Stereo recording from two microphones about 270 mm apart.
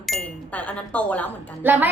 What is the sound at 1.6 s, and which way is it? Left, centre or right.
Speech, centre.